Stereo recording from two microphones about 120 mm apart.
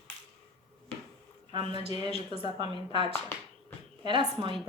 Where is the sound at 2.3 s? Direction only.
55° left (ahead or behind).